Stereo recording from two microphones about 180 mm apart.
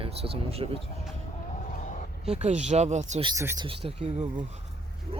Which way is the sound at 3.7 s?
35° right (ahead or behind).